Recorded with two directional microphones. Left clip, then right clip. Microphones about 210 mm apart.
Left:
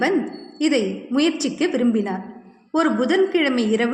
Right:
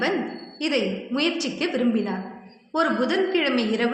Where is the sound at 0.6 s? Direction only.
50° left (ahead or behind).